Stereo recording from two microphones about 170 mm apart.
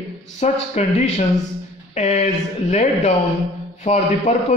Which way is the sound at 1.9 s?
40° left (ahead or behind).